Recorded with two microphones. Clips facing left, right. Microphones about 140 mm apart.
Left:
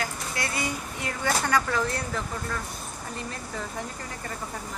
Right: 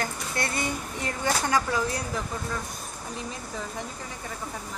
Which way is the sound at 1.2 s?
15° right (ahead or behind).